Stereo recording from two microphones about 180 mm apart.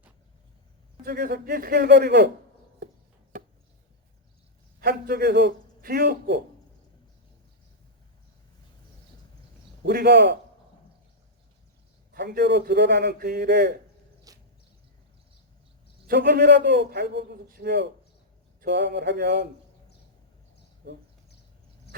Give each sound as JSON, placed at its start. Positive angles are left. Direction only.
{"t": 1.0, "sound": "speech", "side_deg": -60}
{"t": 4.8, "sound": "speech", "side_deg": -60}
{"t": 9.8, "sound": "a man's voice", "side_deg": -65}
{"t": 12.1, "sound": "speech", "side_deg": -60}
{"t": 14.3, "sound": "a sound", "side_deg": -20}
{"t": 16.0, "sound": "a man's voice", "side_deg": -60}